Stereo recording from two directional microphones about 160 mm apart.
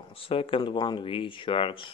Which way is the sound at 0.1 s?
35° left (ahead or behind).